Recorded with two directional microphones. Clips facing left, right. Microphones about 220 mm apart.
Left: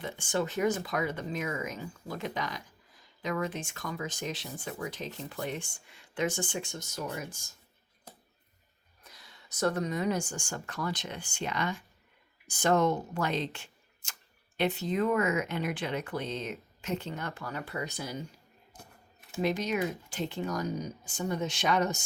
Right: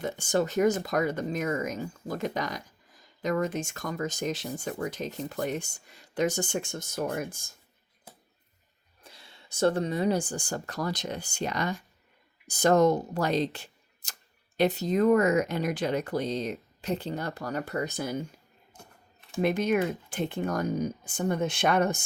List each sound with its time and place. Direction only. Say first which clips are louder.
0.0 s speech: right 5 dB; 40° right (ahead or behind)
9.0 s speech: right 3 dB; 30° right (ahead or behind); by 18.3 s 50° right (ahead or behind)
19.4 s speech: right 4 dB; 55° right (ahead or behind)